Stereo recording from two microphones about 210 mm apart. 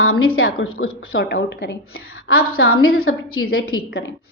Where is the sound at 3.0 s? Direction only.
85° left.